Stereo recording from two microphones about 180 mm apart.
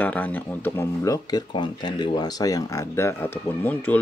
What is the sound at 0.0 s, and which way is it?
Speech, 10° left (ahead or behind).